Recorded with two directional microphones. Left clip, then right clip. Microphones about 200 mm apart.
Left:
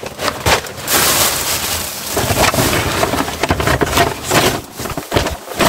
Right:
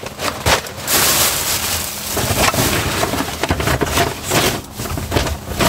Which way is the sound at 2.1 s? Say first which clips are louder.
Left 2 dB; 5° right (ahead or behind).